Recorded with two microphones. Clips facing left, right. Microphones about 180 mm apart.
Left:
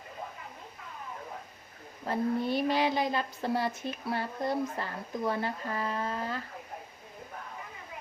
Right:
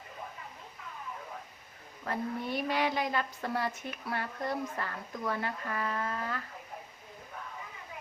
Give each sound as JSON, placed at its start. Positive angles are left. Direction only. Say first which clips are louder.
{"t": 2.0, "sound": "speech", "louder": "left 5 dB", "side_deg": 30}